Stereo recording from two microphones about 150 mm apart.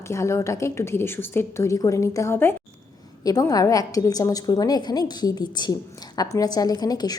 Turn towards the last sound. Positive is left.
turn(degrees=25)  # may be behind; listen again after turning